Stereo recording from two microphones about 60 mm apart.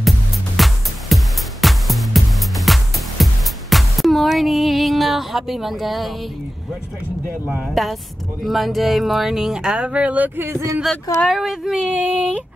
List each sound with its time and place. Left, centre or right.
0.6 s music: centre
7.6 s speech: centre; by 10.4 s right
11.2 s speech: centre